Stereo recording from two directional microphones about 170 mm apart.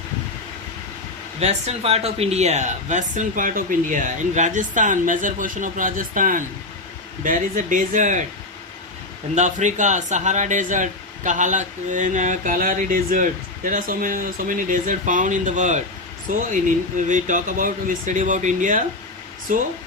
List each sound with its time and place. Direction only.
1.4 s speech: 40° right (ahead or behind)
9.3 s speech: 45° right (ahead or behind)